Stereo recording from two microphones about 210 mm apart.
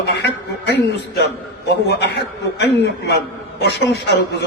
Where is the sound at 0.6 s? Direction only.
55° left (ahead or behind).